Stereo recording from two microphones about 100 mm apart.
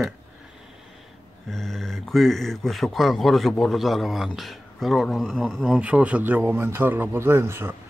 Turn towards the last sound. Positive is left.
turn(degrees=-25)  # may be behind; listen again after turning